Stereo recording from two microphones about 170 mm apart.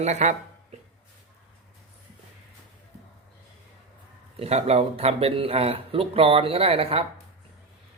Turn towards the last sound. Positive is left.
turn(degrees=-35)  # may be behind; listen again after turning